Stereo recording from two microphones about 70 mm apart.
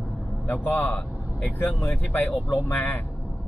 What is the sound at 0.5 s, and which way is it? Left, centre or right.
Speech, left.